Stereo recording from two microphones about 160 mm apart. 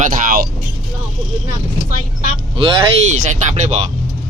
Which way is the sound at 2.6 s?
35° right (ahead or behind).